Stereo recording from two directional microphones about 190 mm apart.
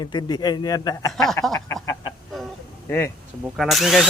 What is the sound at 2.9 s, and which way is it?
Speech, 10° left (ahead or behind).